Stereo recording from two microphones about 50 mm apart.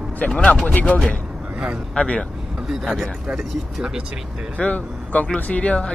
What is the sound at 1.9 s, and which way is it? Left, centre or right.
Speech, left.